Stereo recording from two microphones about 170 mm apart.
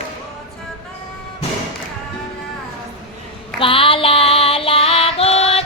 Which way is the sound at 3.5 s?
30° left (ahead or behind).